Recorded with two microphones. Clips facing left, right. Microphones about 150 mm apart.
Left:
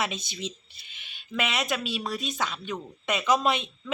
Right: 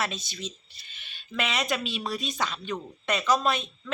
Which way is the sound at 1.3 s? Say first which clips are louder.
Even; 5° left (ahead or behind).